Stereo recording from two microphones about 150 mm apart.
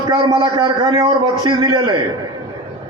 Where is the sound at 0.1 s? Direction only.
25° right (ahead or behind).